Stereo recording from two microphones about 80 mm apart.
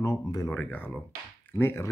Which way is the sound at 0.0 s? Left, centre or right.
Left.